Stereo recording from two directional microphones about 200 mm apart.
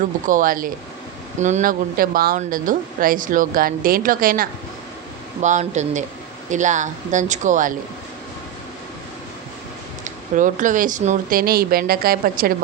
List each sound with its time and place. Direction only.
0.0 s speech: 40° right (ahead or behind)
10.0 s speech: 40° right (ahead or behind)